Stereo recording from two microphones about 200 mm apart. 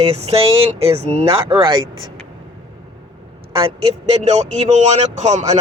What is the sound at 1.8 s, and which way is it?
Speech, 80° right.